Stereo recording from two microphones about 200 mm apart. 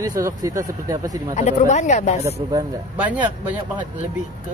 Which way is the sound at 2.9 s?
10° right (ahead or behind).